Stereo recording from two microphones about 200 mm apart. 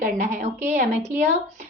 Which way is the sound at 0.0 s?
40° right (ahead or behind).